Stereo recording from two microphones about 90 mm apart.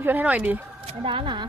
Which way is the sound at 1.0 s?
80° right.